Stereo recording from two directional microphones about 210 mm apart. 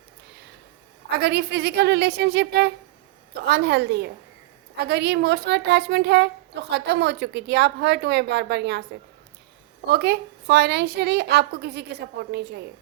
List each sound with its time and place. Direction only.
1.1 s a woman's voice: 50° right (ahead or behind)
9.8 s a woman's voice: 50° right (ahead or behind)